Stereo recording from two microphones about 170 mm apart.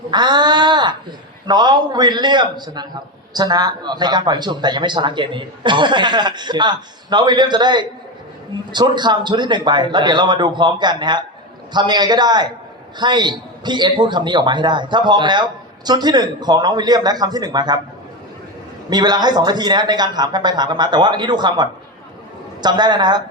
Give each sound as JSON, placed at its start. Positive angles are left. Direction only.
{"t": 0.1, "sound": "a man's voice", "side_deg": -25}
{"t": 18.9, "sound": "a man's voice", "side_deg": -25}